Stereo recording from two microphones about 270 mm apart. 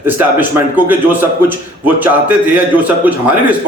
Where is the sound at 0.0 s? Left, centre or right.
Centre.